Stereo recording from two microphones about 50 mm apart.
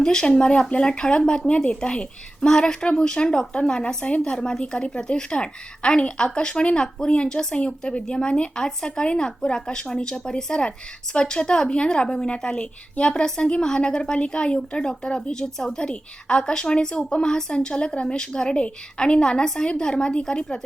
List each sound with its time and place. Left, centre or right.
0.0 s a woman's voice: centre
1.5 s a woman's voice: left